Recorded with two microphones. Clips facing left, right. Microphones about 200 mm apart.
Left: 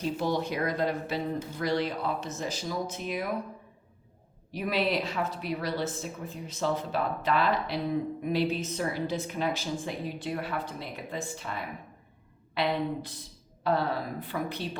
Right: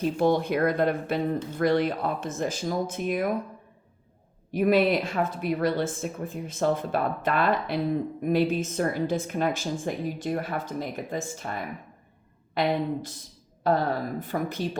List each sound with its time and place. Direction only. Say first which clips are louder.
0.0 s speech: right 6 dB; 55° right (ahead or behind)
4.5 s speech: right 7 dB; 50° right (ahead or behind)